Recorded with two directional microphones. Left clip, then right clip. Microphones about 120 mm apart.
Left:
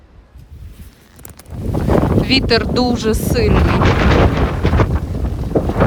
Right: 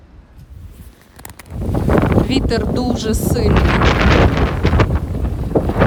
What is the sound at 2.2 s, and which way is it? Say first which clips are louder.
Speech: left 4 dB; 25° right (ahead or behind).